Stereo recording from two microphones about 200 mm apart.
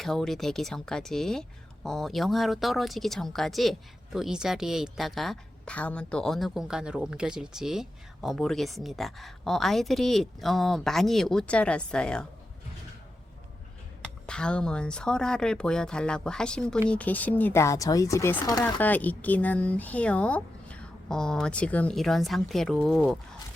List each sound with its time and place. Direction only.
0.0 s speech: centre (ahead or behind)
14.3 s speech: 5° left (ahead or behind)